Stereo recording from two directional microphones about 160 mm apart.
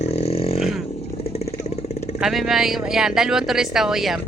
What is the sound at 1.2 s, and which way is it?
Vehicle, 40° left (ahead or behind).